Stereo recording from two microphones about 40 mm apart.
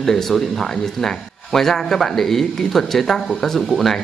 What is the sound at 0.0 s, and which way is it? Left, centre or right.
Speech, centre.